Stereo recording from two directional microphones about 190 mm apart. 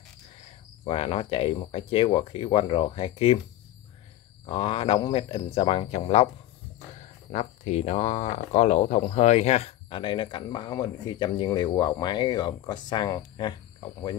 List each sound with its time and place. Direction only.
0.8 s speech: 30° left (ahead or behind)
4.5 s speech: 30° left (ahead or behind)
7.2 s speech: 35° left (ahead or behind)